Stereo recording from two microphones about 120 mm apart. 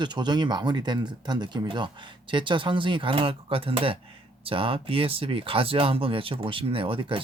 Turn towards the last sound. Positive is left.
turn(degrees=-45)  # may be behind; listen again after turning